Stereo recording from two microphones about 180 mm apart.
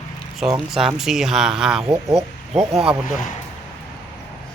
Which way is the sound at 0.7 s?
Centre (ahead or behind).